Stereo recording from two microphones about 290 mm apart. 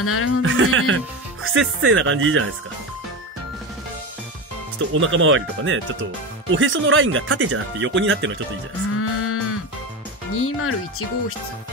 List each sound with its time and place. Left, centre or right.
0.0 s speech: left
0.4 s speech: right
4.7 s speech: right
8.9 s music: left
10.4 s speech: left